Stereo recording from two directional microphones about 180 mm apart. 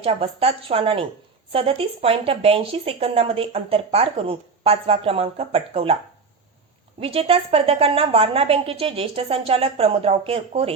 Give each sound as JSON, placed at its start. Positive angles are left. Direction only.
{"t": 0.0, "sound": "speech", "side_deg": -30}
{"t": 7.0, "sound": "speech", "side_deg": -30}